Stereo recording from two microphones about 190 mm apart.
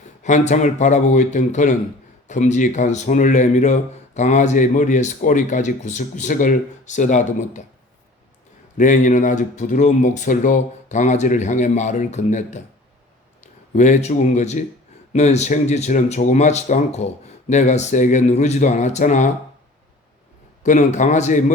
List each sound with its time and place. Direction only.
0.2 s speech: 40° left (ahead or behind)
8.8 s speech: 40° left (ahead or behind)
13.7 s speech: 40° left (ahead or behind)
20.7 s speech: 40° left (ahead or behind)